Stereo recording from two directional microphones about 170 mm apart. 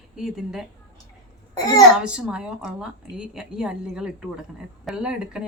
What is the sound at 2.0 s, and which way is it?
Speech, 5° right (ahead or behind).